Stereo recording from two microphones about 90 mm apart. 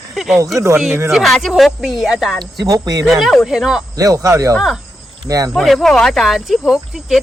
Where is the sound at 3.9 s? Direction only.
40° right (ahead or behind).